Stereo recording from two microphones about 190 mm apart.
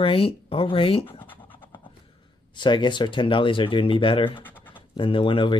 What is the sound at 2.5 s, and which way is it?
Speech, 25° left (ahead or behind).